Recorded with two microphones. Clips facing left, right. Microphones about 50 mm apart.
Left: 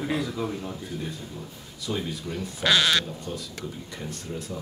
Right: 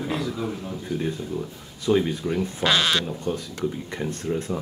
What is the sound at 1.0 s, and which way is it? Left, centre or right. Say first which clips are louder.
Speech: right 8 dB; right.